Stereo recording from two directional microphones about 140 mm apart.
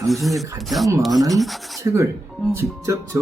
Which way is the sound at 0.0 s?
Centre (ahead or behind).